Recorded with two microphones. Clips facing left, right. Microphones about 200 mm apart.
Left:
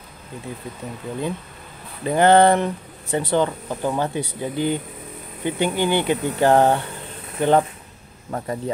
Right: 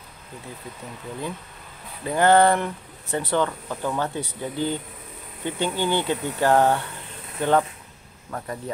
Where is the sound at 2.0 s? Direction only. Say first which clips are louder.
Left 3 dB; 20° left (ahead or behind).